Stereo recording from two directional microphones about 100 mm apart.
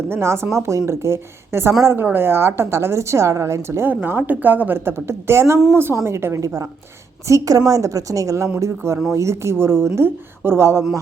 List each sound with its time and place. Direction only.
0.1 s a woman's voice: 25° right (ahead or behind)